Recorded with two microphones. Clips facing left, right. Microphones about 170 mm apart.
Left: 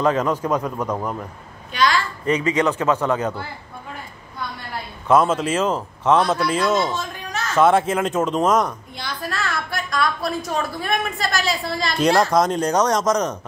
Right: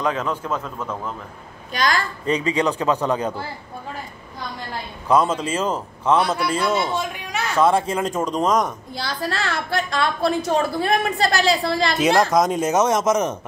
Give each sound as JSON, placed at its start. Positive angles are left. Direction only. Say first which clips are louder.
{"t": 0.0, "sound": "speech", "louder": "left 4 dB", "side_deg": 10}
{"t": 1.7, "sound": "a sound", "louder": "left 2 dB", "side_deg": -45}
{"t": 2.2, "sound": "speech", "louder": "left 1 dB", "side_deg": -35}
{"t": 2.6, "sound": "a man's voice", "louder": "left 1 dB", "side_deg": -15}
{"t": 5.0, "sound": "a man's voice", "louder": "left 2 dB", "side_deg": 5}
{"t": 6.1, "sound": "a man's voice", "louder": "left 1 dB", "side_deg": -10}
{"t": 7.0, "sound": "a sound", "louder": "right 3 dB", "side_deg": -10}
{"t": 7.6, "sound": "speech", "louder": "left 2 dB", "side_deg": 5}
{"t": 8.9, "sound": "a woman's voice", "louder": "right 3 dB", "side_deg": -30}
{"t": 12.0, "sound": "speech", "louder": "left 2 dB", "side_deg": 0}